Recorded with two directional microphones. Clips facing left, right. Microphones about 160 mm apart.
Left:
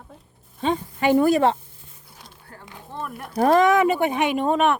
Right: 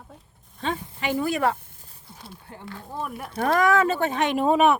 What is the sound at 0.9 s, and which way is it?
Speech, 50° left (ahead or behind).